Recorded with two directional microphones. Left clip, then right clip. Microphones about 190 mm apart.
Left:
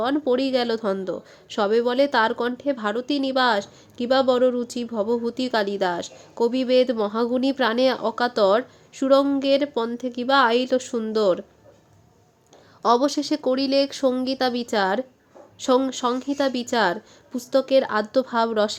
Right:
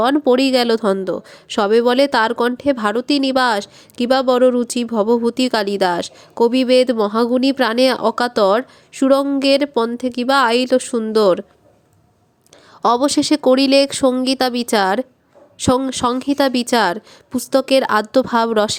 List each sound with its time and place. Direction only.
0.0 s a woman's voice: 30° right (ahead or behind)
12.8 s a woman's voice: 30° right (ahead or behind)